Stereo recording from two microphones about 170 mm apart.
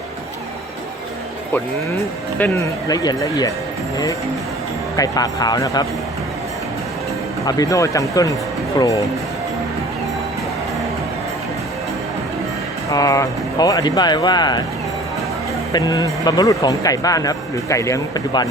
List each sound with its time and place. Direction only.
1.5 s speech: 10° left (ahead or behind)
4.9 s speech: 20° left (ahead or behind)
7.4 s speech: 20° left (ahead or behind)
12.9 s speech: 20° left (ahead or behind)
15.7 s speech: 20° left (ahead or behind)